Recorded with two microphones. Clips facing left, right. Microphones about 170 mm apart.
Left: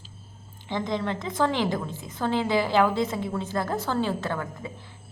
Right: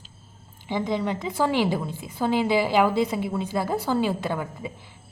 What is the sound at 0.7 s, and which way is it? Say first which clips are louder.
A woman's voice: right 2 dB; 10° right (ahead or behind).